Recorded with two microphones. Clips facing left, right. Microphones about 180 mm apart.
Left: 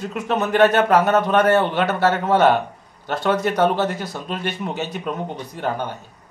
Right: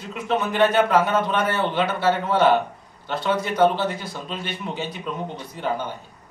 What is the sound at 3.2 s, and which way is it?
Speech, 70° left (ahead or behind).